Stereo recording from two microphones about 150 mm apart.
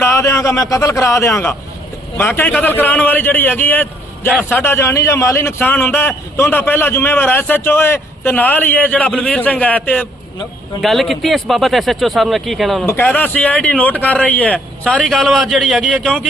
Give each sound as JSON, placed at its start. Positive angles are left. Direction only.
{"t": 0.0, "sound": "a man's voice", "side_deg": 20}
{"t": 12.8, "sound": "a man's voice", "side_deg": 15}